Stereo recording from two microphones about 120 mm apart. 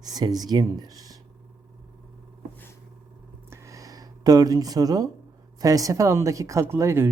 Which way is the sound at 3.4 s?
25° right (ahead or behind).